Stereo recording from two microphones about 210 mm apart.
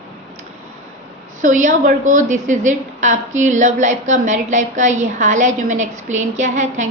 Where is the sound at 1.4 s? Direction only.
35° right (ahead or behind).